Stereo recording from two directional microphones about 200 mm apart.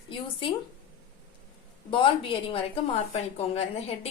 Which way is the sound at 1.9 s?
25° left (ahead or behind).